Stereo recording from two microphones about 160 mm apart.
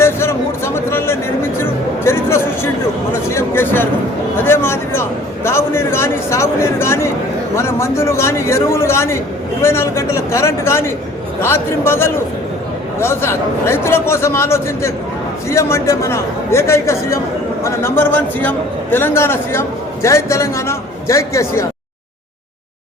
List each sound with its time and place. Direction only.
0.0 s music: 15° left (ahead or behind)
3.2 s speech: 15° left (ahead or behind)
4.4 s a sound: 15° left (ahead or behind)
7.5 s a man's voice: 15° left (ahead or behind)